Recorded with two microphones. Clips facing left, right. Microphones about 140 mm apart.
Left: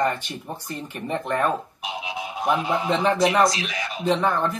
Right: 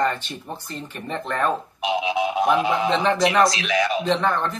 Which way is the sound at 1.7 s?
90° right.